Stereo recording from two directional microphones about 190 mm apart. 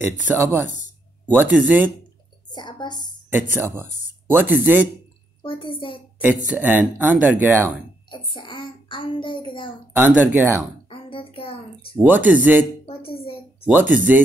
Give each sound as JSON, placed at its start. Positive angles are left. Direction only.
{"t": 0.0, "sound": "speech", "side_deg": -10}
{"t": 2.5, "sound": "a woman's voice", "side_deg": 25}
{"t": 3.3, "sound": "speech", "side_deg": -10}
{"t": 5.4, "sound": "a child's voice", "side_deg": 25}
{"t": 6.2, "sound": "speech", "side_deg": -10}
{"t": 8.1, "sound": "a child's voice", "side_deg": 25}
{"t": 9.9, "sound": "speech", "side_deg": -10}
{"t": 10.9, "sound": "a sound", "side_deg": 30}
{"t": 12.0, "sound": "speech", "side_deg": -10}
{"t": 12.8, "sound": "a sound", "side_deg": 30}
{"t": 13.7, "sound": "speech", "side_deg": -10}